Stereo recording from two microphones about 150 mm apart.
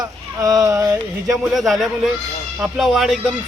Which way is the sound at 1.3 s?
Centre (ahead or behind).